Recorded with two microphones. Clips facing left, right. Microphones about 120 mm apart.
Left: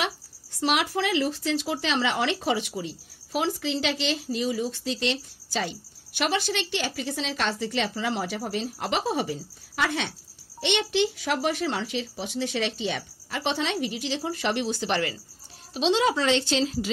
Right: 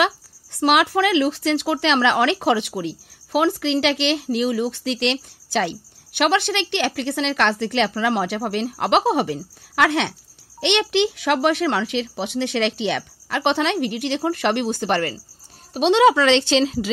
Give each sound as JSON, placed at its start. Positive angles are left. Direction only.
{"t": 0.6, "sound": "speech", "side_deg": -65}
{"t": 15.7, "sound": "speech", "side_deg": -65}